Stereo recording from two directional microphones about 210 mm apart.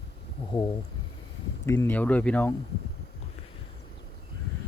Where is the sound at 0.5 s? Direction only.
20° left (ahead or behind).